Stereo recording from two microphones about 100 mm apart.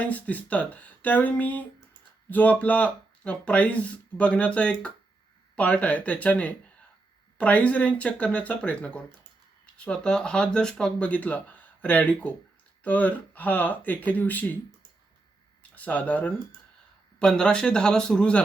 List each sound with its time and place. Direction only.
0.1 s speech: 15° left (ahead or behind)
15.7 s speech: 15° left (ahead or behind)